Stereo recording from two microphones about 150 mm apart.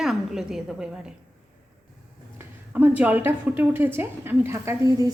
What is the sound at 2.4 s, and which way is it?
A woman's voice, 10° right (ahead or behind).